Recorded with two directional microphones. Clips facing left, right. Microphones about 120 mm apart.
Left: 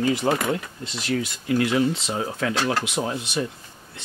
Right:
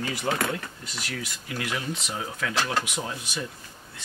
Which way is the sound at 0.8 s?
25° left (ahead or behind).